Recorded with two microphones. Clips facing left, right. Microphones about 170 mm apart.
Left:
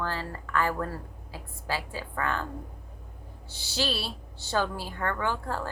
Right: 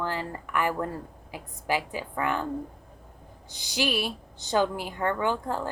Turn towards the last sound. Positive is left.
turn(degrees=-20)  # may be behind; listen again after turning